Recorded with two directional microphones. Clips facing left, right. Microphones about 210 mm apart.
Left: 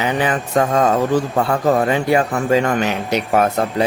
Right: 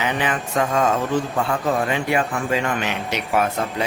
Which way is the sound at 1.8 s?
40° left (ahead or behind).